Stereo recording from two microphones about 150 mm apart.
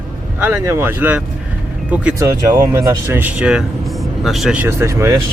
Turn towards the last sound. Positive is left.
turn(degrees=-20)  # may be behind; listen again after turning